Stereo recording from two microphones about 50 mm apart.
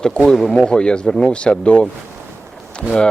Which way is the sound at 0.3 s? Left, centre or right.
Centre.